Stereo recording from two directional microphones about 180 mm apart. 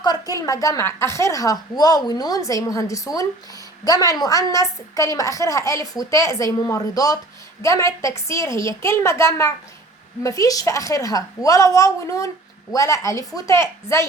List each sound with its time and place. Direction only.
0.0 s a woman's voice: 20° left (ahead or behind)